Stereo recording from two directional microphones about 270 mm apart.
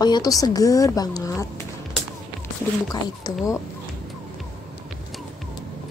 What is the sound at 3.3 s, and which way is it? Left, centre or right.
Speech, centre.